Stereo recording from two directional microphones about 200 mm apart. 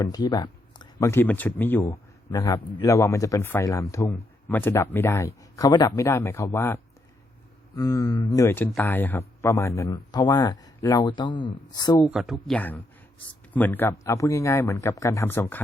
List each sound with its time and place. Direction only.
0.0 s speech: 20° left (ahead or behind)
7.8 s speech: 15° left (ahead or behind)
12.0 s speech: 5° right (ahead or behind)